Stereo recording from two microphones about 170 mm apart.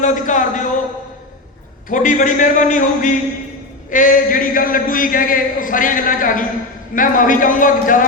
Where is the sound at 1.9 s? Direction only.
50° left (ahead or behind).